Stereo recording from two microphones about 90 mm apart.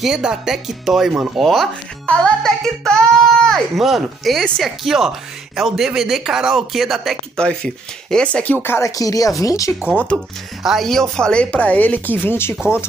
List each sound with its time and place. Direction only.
0.0 s speech: 5° right (ahead or behind)
7.3 s speech: 10° left (ahead or behind)
8.6 s speech: 30° left (ahead or behind)
8.9 s speech: 40° left (ahead or behind)
10.1 s speech: 5° right (ahead or behind); by 12.5 s 25° left (ahead or behind)
12.5 s speech: 10° right (ahead or behind)